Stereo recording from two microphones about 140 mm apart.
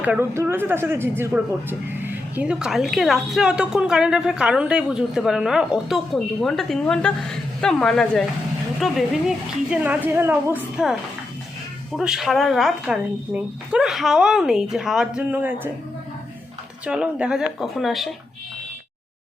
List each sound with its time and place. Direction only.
0.0 s a woman's voice: 15° right (ahead or behind)
11.9 s a woman's voice: centre (ahead or behind)
16.8 s a woman's voice: 5° right (ahead or behind)